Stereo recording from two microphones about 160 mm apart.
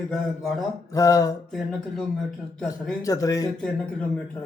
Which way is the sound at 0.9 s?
20° left (ahead or behind).